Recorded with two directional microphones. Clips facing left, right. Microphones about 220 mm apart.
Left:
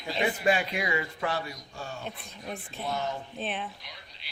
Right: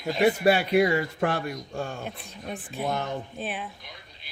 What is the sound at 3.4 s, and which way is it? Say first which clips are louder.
Speech: right 1 dB; centre (ahead or behind).